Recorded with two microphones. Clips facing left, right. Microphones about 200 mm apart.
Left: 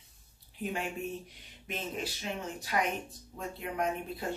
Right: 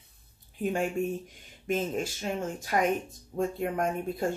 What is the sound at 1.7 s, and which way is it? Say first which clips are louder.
Speech: right 8 dB; 45° right (ahead or behind).